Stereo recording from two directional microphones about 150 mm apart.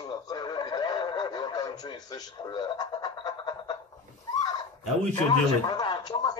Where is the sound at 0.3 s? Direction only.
30° left (ahead or behind).